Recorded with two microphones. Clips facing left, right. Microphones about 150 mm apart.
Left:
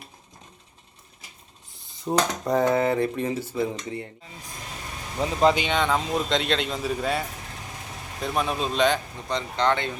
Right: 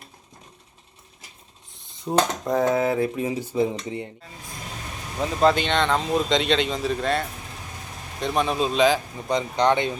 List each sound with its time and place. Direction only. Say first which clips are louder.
2.0 s speech: right 1 dB; centre (ahead or behind); by 4.1 s 20° right (ahead or behind)
5.2 s speech: right 1 dB; 15° left (ahead or behind)
9.3 s speech: right 4 dB; 15° right (ahead or behind)